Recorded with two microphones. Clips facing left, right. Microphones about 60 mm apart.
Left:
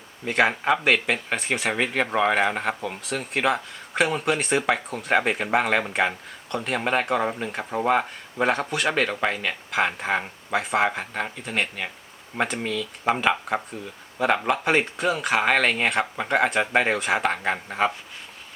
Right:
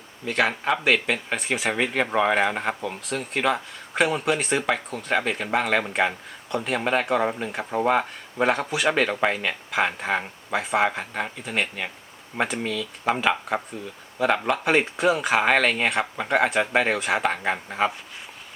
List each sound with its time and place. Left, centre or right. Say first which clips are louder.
0.3 s speech: left 2 dB; centre
0.7 s speech: left 1 dB; centre
5.1 s speech: left 2 dB; centre